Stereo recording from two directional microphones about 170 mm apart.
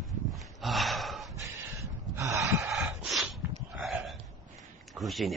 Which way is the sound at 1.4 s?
20° right (ahead or behind).